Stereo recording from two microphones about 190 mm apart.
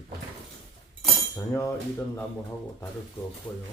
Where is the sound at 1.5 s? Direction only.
15° left (ahead or behind).